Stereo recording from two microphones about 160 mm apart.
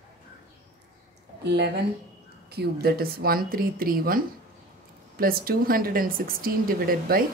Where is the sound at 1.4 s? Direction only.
90° right.